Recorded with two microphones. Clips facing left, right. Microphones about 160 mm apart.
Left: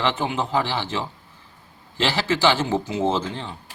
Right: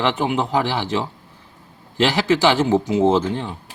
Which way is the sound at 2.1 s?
10° right (ahead or behind).